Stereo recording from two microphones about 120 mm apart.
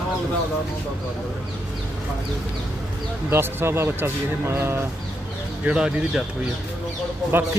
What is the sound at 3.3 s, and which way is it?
Speech, 20° right (ahead or behind).